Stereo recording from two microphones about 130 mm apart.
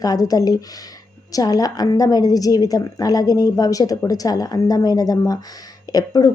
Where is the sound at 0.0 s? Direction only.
30° left (ahead or behind).